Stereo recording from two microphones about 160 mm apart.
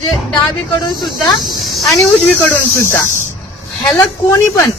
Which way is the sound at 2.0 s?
10° left (ahead or behind).